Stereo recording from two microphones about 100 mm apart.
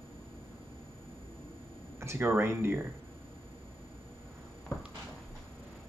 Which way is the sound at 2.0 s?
25° right (ahead or behind).